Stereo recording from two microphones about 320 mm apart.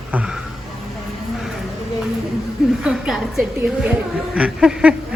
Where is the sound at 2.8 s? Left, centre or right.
Centre.